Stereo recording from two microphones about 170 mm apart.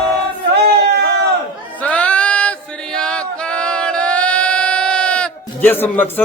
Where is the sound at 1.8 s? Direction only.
5° left (ahead or behind).